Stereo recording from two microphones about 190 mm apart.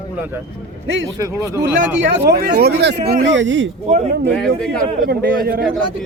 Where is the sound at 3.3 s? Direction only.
75° right (ahead or behind).